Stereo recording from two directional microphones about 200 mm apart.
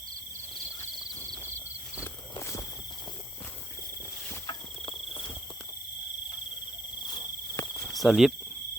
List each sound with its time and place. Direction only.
1.2 s a sound: 10° left (ahead or behind)
2.3 s walk: 15° left (ahead or behind)
4.4 s cricket: 25° left (ahead or behind)
7.0 s cricket: 20° left (ahead or behind)
7.9 s cricket: centre (ahead or behind)